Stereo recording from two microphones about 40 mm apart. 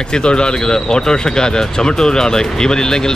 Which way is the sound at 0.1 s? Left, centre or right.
Left.